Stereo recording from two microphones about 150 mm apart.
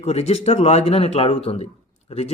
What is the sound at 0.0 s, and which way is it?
A man's voice, 45° left (ahead or behind).